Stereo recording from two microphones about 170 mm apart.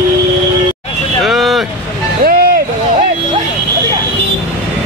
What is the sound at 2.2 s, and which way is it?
Vehicle, 60° right (ahead or behind).